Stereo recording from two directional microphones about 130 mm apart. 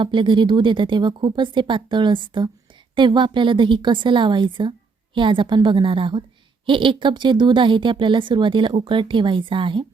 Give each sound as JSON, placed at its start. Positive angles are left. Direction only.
{"t": 0.0, "sound": "a woman's voice", "side_deg": -40}